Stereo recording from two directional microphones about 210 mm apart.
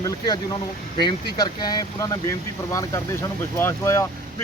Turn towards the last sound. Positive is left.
turn(degrees=15)  # may be behind; listen again after turning